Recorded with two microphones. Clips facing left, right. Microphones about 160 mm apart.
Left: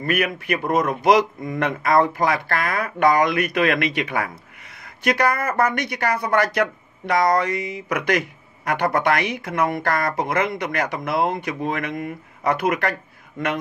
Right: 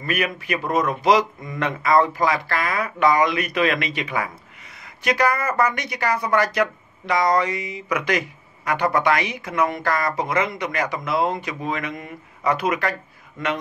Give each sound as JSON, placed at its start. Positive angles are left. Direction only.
{"t": 0.0, "sound": "speech", "side_deg": 55}